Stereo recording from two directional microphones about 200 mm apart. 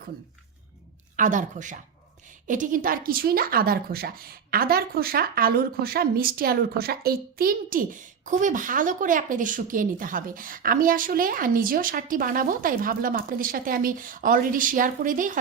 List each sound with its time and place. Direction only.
1.1 s a woman's voice: 40° right (ahead or behind)